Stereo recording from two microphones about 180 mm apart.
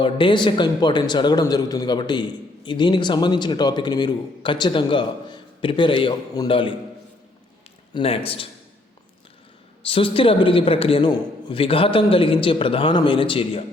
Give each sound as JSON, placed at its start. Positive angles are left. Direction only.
{"t": 0.0, "sound": "speech", "side_deg": 25}
{"t": 7.9, "sound": "a man's voice", "side_deg": 30}
{"t": 9.8, "sound": "speech", "side_deg": 30}